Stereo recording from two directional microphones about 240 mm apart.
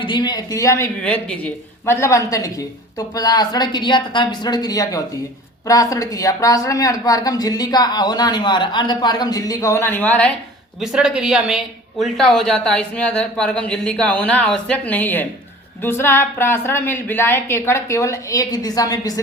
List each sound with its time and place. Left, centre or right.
0.0 s a woman's voice: centre